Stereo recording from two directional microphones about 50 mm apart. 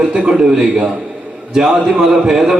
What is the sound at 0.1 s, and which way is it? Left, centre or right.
A man's voice, centre.